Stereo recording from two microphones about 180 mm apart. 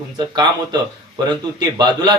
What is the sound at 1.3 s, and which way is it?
Speech, 25° right (ahead or behind).